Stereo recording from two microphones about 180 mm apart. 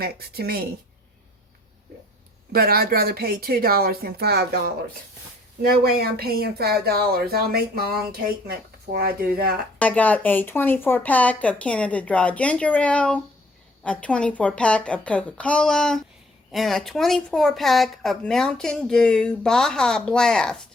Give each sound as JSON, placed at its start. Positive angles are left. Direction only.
{"t": 0.0, "sound": "speech", "side_deg": -60}
{"t": 2.5, "sound": "speech", "side_deg": -60}
{"t": 9.7, "sound": "speech", "side_deg": 5}